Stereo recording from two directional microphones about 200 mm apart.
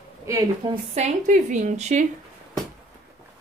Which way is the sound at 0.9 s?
35° right (ahead or behind).